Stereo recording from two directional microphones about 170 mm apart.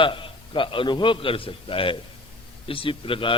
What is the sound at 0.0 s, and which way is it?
A man's voice, 30° left (ahead or behind).